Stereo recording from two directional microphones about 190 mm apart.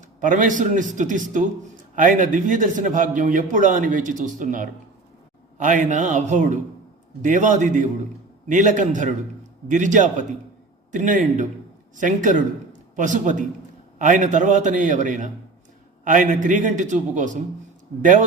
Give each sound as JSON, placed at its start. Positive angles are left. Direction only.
{"t": 0.2, "sound": "a man's voice", "side_deg": -45}